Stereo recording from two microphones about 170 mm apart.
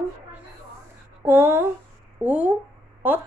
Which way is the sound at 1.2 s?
15° right (ahead or behind).